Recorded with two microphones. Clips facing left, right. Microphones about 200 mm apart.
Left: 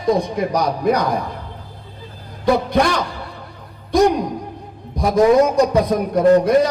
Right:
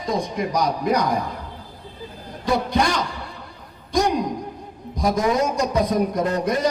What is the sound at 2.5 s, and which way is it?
Speech, 60° left (ahead or behind).